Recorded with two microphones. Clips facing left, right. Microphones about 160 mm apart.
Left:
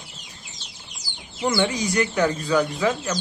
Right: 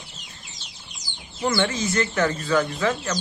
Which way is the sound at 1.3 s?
15° left (ahead or behind).